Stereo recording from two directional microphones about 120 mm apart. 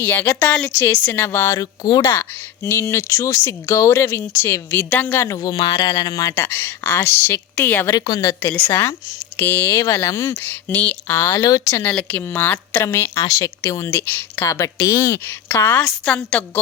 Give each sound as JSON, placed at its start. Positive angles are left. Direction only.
{"t": 0.0, "sound": "a woman's voice", "side_deg": 15}
{"t": 2.6, "sound": "a woman's voice", "side_deg": 20}
{"t": 7.9, "sound": "a woman's voice", "side_deg": 30}
{"t": 8.4, "sound": "a woman's voice", "side_deg": 15}
{"t": 11.9, "sound": "a woman's voice", "side_deg": 10}
{"t": 15.8, "sound": "a woman's voice", "side_deg": 5}